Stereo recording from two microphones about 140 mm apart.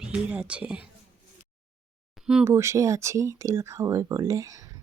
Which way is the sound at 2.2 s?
Centre (ahead or behind).